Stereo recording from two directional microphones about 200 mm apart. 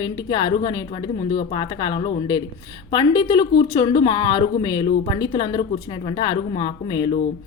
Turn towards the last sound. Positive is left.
turn(degrees=25)  # may be behind; listen again after turning